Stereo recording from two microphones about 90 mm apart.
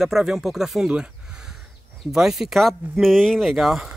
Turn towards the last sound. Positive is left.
turn(degrees=-5)  # may be behind; listen again after turning